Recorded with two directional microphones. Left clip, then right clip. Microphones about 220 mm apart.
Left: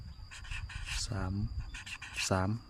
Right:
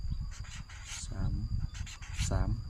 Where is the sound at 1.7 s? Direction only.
10° left (ahead or behind).